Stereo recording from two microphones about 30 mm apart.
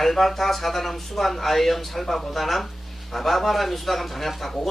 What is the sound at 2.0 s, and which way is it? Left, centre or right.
Speech, centre.